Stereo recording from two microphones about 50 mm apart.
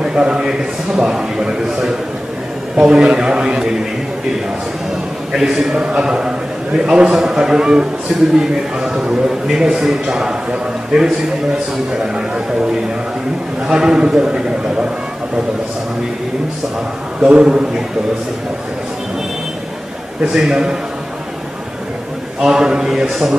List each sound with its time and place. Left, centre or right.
0.0 s a man's voice: centre
2.8 s a man's voice: centre
5.3 s a man's voice: centre
13.7 s a man's voice: centre
17.2 s a man's voice: right
20.3 s a man's voice: centre
22.4 s a man's voice: centre